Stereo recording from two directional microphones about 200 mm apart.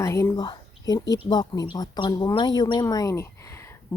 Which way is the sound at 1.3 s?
20° left (ahead or behind).